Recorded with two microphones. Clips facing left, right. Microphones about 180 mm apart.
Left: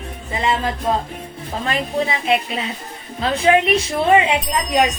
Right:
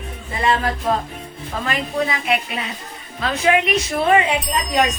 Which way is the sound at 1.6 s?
25° left (ahead or behind).